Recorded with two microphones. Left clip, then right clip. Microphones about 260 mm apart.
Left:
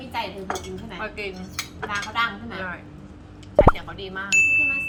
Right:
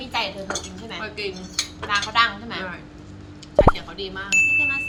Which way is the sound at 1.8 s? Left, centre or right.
Centre.